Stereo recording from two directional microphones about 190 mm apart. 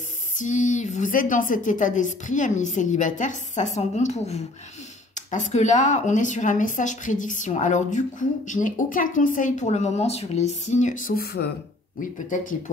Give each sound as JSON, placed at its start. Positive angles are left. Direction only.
{"t": 0.4, "sound": "speech", "side_deg": 40}